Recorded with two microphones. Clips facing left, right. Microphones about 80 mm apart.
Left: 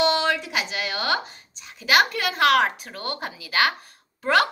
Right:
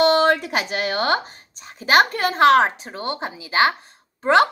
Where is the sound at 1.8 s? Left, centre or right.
Right.